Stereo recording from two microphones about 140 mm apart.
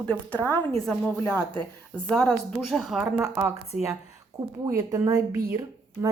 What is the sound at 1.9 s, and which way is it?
A woman's voice, 5° left (ahead or behind).